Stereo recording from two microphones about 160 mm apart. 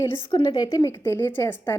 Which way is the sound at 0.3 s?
30° left (ahead or behind).